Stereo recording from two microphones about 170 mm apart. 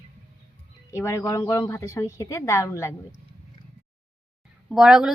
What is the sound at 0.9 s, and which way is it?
A woman's voice, 15° left (ahead or behind).